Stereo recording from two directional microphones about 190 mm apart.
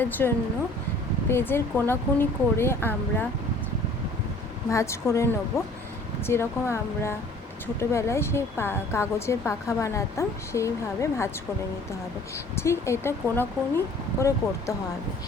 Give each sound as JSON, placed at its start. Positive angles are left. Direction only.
{"t": 0.0, "sound": "a woman's voice", "side_deg": 10}
{"t": 4.7, "sound": "a woman's voice", "side_deg": 15}
{"t": 12.5, "sound": "a woman's voice", "side_deg": 15}